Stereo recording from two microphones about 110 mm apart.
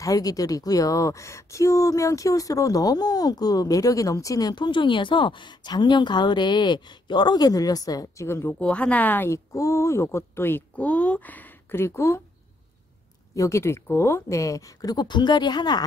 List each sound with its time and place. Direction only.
0.0 s speech: 30° left (ahead or behind)
8.3 s speech: 15° left (ahead or behind)
13.3 s speech: 25° left (ahead or behind)